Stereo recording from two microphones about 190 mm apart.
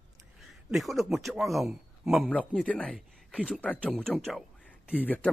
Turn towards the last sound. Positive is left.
turn(degrees=10)  # may be behind; listen again after turning